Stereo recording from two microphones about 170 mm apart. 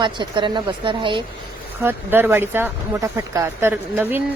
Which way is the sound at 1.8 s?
15° right (ahead or behind).